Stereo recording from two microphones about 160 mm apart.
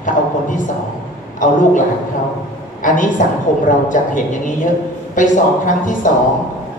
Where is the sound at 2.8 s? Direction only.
55° left (ahead or behind).